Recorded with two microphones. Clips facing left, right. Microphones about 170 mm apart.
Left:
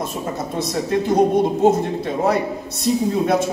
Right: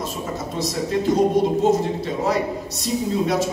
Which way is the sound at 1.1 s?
55° left (ahead or behind).